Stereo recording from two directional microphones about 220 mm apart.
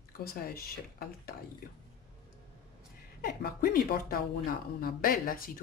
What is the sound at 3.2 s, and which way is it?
Speech, 45° left (ahead or behind).